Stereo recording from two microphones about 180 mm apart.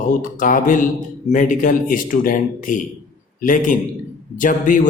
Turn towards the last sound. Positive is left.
turn(degrees=45)  # may be behind; listen again after turning